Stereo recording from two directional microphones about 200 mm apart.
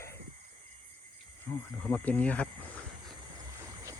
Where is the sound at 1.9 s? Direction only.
5° left (ahead or behind).